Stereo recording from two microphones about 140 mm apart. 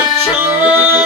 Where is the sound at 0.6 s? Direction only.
15° right (ahead or behind).